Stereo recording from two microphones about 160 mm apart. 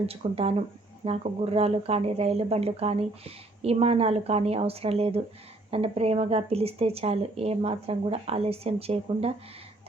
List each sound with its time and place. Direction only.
0.0 s speech: 40° right (ahead or behind)